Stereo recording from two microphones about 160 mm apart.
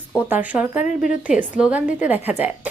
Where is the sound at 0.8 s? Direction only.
55° left (ahead or behind).